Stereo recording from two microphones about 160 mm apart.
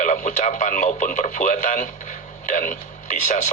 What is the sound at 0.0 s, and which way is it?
A man's voice, 50° left (ahead or behind).